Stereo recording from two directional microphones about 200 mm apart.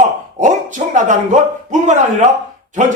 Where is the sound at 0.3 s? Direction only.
40° right (ahead or behind).